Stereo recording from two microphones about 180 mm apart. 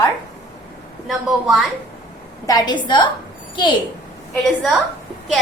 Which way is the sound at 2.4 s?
20° left (ahead or behind).